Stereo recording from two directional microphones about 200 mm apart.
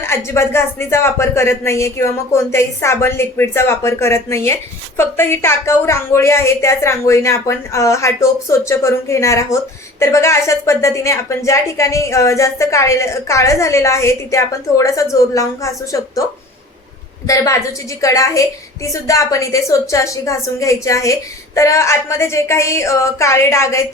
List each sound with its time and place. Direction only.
0.0 s a woman's voice: 10° left (ahead or behind)
17.2 s a woman's voice: 15° left (ahead or behind)